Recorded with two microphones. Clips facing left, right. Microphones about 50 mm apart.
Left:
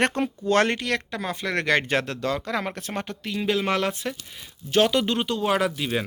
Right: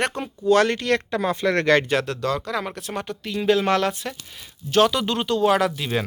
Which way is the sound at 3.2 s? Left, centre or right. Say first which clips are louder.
Right 5 dB; centre.